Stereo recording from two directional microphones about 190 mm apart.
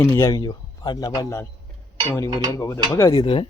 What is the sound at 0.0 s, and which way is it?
Speech, 15° left (ahead or behind).